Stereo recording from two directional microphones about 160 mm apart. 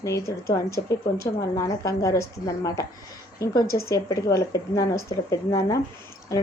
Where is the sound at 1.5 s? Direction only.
20° left (ahead or behind).